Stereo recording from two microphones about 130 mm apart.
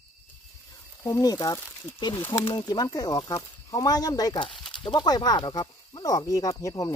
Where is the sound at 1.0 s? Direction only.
25° left (ahead or behind).